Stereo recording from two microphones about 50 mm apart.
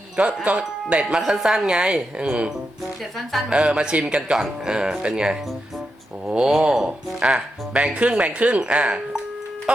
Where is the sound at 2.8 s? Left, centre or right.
Centre.